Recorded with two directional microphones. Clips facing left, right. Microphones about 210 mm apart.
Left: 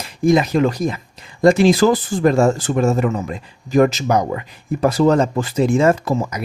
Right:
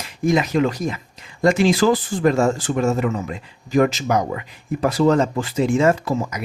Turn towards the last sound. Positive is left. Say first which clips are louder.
# left 2 dB
turn(degrees=40)  # may be behind; listen again after turning